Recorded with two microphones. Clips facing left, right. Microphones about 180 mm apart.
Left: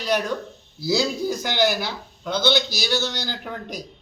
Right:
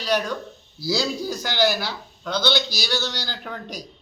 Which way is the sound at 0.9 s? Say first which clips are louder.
Left 2 dB; 10° left (ahead or behind).